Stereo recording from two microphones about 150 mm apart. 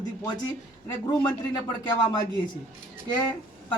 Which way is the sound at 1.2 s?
30° left (ahead or behind).